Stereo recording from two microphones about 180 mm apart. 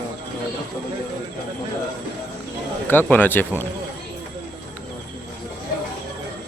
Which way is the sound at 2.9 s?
10° left (ahead or behind).